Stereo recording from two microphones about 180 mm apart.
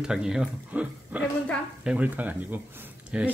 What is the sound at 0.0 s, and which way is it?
Speech, 5° right (ahead or behind).